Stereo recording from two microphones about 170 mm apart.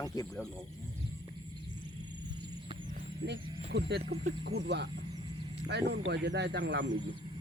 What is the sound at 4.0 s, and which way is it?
Speech, 35° right (ahead or behind).